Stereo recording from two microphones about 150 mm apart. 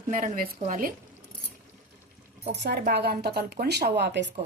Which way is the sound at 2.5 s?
90° right.